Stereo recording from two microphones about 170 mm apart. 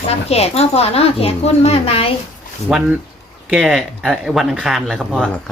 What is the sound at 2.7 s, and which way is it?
Speech, 5° right (ahead or behind).